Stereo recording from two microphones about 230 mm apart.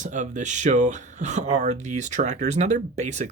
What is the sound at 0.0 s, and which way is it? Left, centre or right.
Speech, right.